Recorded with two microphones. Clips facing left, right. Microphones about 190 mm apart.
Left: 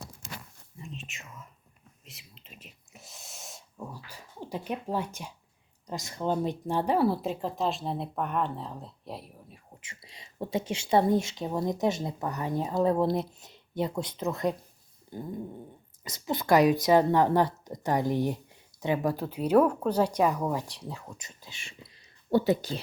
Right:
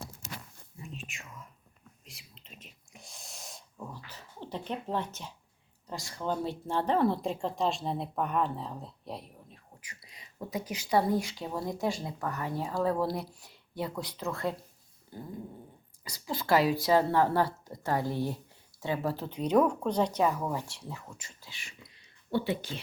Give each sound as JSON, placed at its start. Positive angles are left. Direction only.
{"t": 0.8, "sound": "whispering", "side_deg": 0}
{"t": 2.0, "sound": "a sound", "side_deg": 0}
{"t": 3.8, "sound": "speech", "side_deg": 10}
{"t": 9.8, "sound": "speech", "side_deg": 25}
{"t": 15.1, "sound": "cat", "side_deg": 20}
{"t": 16.0, "sound": "a woman's voice", "side_deg": 20}
{"t": 22.3, "sound": "speech", "side_deg": 40}